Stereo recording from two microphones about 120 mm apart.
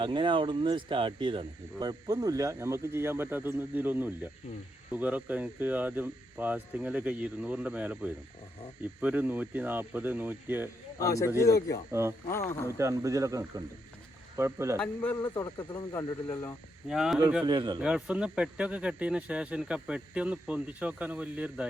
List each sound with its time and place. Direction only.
0.0 s speech: 40° right (ahead or behind); by 10.7 s 15° right (ahead or behind)
11.0 s speech: 25° left (ahead or behind)
11.9 s speech: 20° right (ahead or behind)
12.3 s speech: 20° left (ahead or behind)
12.7 s speech: 25° right (ahead or behind)
14.8 s speech: 15° left (ahead or behind)
15.4 s speech: 35° left (ahead or behind)
16.9 s speech: 5° right (ahead or behind)
17.4 s a man's voice: 40° right (ahead or behind)
17.7 s speech: 10° right (ahead or behind)